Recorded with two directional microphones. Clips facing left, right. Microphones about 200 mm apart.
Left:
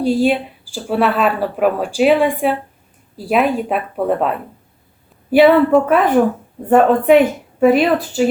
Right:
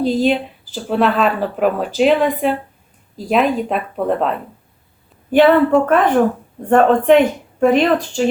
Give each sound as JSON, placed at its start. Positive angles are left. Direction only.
{"t": 0.0, "sound": "a woman's voice", "side_deg": 10}